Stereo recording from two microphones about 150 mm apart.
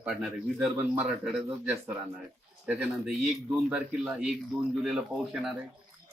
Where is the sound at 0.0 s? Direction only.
5° right (ahead or behind).